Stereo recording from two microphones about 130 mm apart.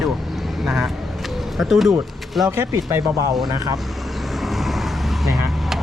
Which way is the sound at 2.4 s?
20° right (ahead or behind).